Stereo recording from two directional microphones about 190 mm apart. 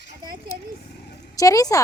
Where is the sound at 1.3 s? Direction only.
20° left (ahead or behind).